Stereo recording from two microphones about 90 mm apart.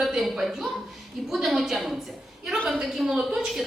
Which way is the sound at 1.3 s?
5° right (ahead or behind).